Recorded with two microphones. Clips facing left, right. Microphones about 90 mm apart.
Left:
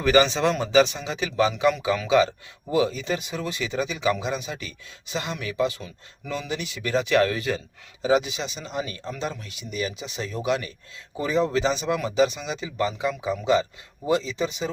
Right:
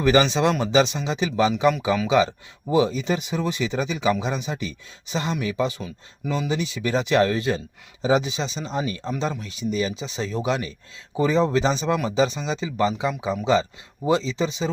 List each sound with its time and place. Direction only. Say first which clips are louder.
0.0 s speech: right 1 dB; 20° right (ahead or behind)